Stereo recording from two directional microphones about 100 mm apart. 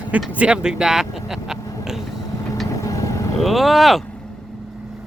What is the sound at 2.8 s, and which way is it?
Vehicle, 35° left (ahead or behind).